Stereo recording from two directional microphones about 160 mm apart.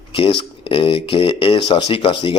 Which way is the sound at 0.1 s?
35° left (ahead or behind).